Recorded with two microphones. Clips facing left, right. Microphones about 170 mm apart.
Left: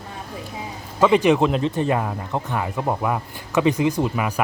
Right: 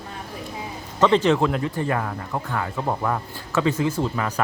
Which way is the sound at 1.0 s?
10° left (ahead or behind).